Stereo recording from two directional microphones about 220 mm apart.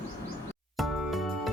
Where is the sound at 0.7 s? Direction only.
Centre (ahead or behind).